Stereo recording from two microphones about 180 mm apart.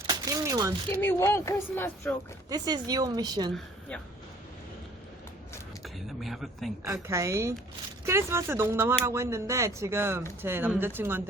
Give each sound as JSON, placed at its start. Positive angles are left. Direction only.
{"t": 0.1, "sound": "a sound", "side_deg": -20}
{"t": 1.0, "sound": "speech", "side_deg": 15}
{"t": 2.5, "sound": "speech", "side_deg": -20}
{"t": 3.5, "sound": "a woman's voice", "side_deg": 5}
{"t": 5.8, "sound": "speech", "side_deg": 0}
{"t": 7.1, "sound": "speech", "side_deg": -15}